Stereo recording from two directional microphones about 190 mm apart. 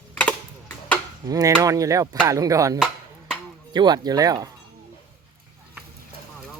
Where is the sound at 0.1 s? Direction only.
10° left (ahead or behind).